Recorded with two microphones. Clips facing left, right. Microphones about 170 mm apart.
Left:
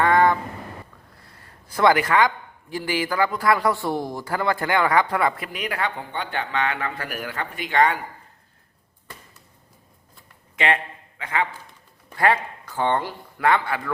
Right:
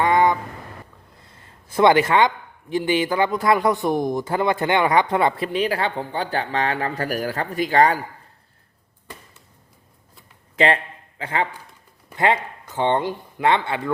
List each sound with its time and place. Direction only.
0.0 s a sound: 20° right (ahead or behind)
1.2 s a man's voice: 20° right (ahead or behind)
10.6 s speech: 35° right (ahead or behind)
12.1 s a man's voice: 20° right (ahead or behind)